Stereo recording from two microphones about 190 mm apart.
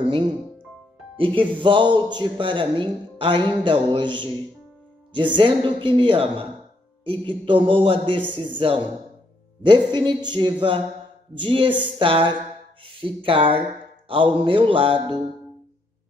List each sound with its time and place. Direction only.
1.1 s speech: 25° right (ahead or behind)